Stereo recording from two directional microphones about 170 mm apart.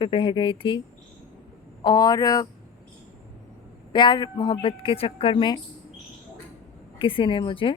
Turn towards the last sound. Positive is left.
turn(degrees=30)  # may be behind; listen again after turning